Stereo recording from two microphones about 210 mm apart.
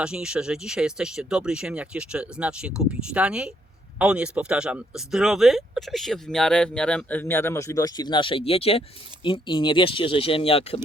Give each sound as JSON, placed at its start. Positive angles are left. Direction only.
{"t": 0.0, "sound": "speech", "side_deg": -5}